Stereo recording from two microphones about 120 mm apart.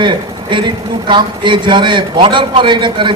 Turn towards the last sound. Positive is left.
turn(degrees=-40)  # may be behind; listen again after turning